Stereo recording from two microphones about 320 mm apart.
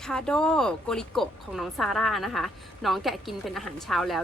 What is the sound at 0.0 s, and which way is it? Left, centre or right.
Speech, centre.